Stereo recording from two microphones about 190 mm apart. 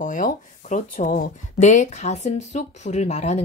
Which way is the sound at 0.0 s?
45° left (ahead or behind).